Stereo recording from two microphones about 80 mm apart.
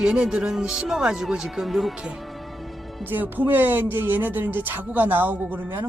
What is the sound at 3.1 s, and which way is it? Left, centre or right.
Speech, right.